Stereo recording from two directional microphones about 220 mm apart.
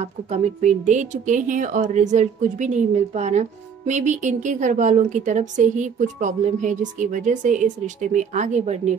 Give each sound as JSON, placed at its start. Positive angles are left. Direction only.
{"t": 0.0, "sound": "a woman's voice", "side_deg": -30}